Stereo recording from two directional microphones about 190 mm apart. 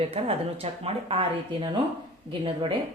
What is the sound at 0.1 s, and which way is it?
A woman's voice, 30° right (ahead or behind).